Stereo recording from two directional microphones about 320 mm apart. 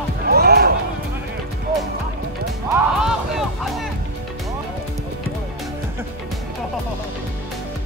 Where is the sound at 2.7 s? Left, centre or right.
Centre.